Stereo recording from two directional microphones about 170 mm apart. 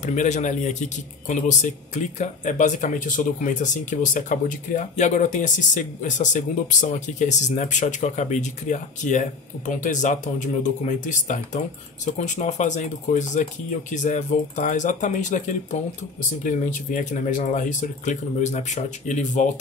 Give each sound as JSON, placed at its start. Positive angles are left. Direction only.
{"t": 0.0, "sound": "speech", "side_deg": 45}